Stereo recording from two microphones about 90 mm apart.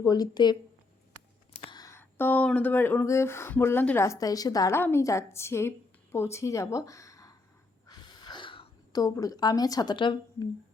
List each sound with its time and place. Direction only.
0.0 s a woman's voice: 45° left (ahead or behind)
1.9 s a sound: 25° left (ahead or behind)
2.5 s a woman's voice: 20° left (ahead or behind); by 4.7 s 45° left (ahead or behind)
4.7 s speech: 25° left (ahead or behind)
7.9 s wheeze: 55° left (ahead or behind)
8.9 s a woman's voice: 40° left (ahead or behind)
9.9 s a woman's voice: 65° left (ahead or behind)